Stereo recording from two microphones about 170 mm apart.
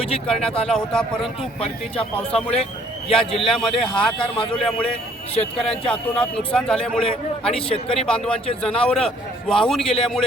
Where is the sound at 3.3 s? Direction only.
Centre (ahead or behind).